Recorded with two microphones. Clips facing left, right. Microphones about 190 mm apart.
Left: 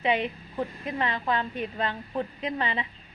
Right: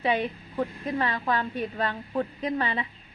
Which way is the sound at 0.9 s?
20° left (ahead or behind).